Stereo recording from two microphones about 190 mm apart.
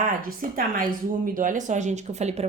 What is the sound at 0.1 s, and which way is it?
A woman's voice, 50° right (ahead or behind).